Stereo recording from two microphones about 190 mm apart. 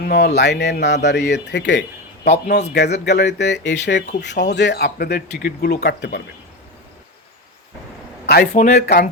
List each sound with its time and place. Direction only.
0.0 s speech: 60° left (ahead or behind)
8.3 s speech: 50° left (ahead or behind)